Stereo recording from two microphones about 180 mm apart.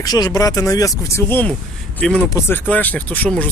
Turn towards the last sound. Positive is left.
turn(degrees=10)  # may be behind; listen again after turning